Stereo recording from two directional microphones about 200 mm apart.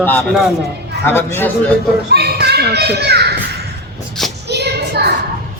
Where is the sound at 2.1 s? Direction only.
55° right (ahead or behind).